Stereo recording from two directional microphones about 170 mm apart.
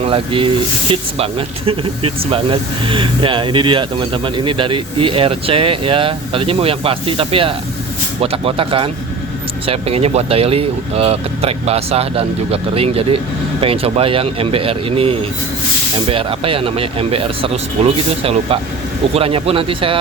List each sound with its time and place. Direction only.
0.0 s speech: 30° right (ahead or behind)